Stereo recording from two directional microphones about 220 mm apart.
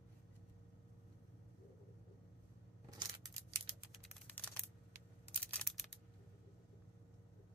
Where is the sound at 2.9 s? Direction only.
20° right (ahead or behind).